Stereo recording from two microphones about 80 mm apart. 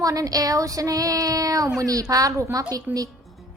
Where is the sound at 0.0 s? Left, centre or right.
Right.